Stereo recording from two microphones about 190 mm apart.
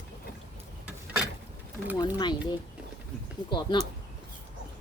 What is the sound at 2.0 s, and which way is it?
Speech, 25° left (ahead or behind).